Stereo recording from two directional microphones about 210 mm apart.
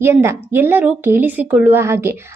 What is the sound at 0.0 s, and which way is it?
A woman's voice, 10° right (ahead or behind).